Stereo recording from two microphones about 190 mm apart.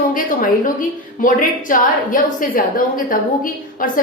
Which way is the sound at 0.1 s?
45° left (ahead or behind).